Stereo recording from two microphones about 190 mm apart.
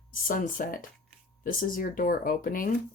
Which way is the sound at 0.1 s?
45° left (ahead or behind).